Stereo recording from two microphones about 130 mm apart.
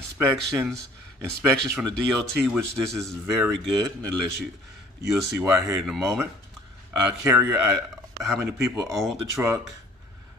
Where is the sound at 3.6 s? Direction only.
5° left (ahead or behind).